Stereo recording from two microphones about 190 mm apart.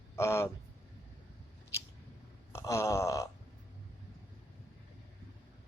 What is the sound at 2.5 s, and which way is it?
Wail, 15° left (ahead or behind).